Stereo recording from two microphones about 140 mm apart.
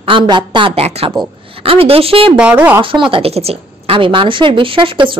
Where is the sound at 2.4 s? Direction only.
10° right (ahead or behind).